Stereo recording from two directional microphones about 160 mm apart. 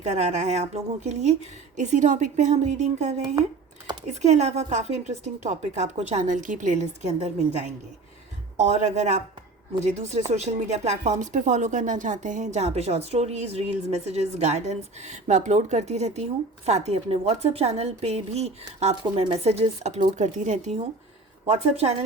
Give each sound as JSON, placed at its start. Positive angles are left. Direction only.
{"t": 0.0, "sound": "a woman's voice", "side_deg": -45}